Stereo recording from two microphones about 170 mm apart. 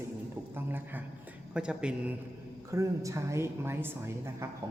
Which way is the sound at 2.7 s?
15° right (ahead or behind).